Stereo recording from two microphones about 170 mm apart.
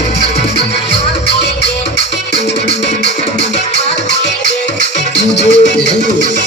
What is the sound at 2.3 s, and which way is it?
Music, 90° left.